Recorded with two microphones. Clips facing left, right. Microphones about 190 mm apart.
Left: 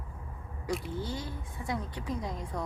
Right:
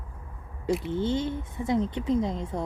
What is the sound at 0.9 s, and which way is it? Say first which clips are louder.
Speech: right 10 dB; 25° right (ahead or behind).